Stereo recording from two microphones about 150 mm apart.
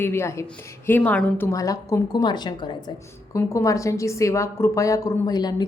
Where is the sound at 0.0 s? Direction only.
15° left (ahead or behind).